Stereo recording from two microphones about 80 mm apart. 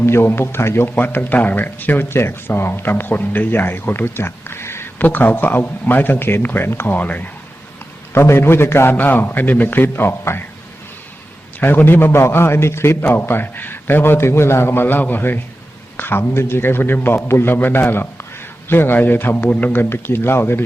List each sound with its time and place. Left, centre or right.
0.0 s a man's voice: left
8.1 s speech: left
11.6 s speech: left